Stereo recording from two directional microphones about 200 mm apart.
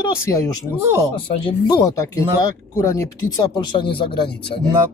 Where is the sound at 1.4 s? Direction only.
20° left (ahead or behind).